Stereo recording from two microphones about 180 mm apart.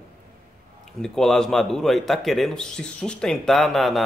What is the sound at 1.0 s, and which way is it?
Speech, centre (ahead or behind).